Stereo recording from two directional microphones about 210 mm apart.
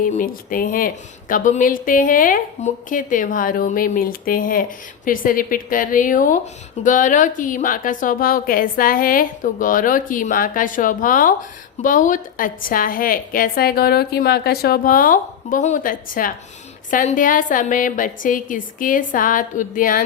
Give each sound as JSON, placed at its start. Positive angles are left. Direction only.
{"t": 0.0, "sound": "a woman's voice", "side_deg": 40}